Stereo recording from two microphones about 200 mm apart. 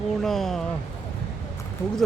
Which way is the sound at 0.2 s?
Centre (ahead or behind).